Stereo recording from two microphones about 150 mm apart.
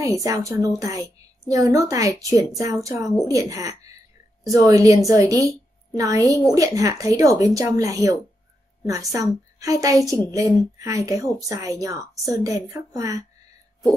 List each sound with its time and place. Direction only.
0.0 s a woman's voice: 25° right (ahead or behind)